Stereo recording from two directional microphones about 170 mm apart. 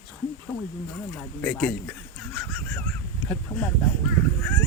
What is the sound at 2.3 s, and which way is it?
Goose, 5° left (ahead or behind).